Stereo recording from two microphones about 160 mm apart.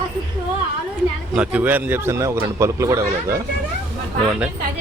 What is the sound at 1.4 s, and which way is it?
A man's voice, 10° right (ahead or behind).